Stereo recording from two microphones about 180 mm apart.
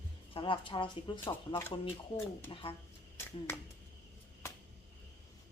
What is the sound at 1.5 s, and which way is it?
Speech, 15° left (ahead or behind).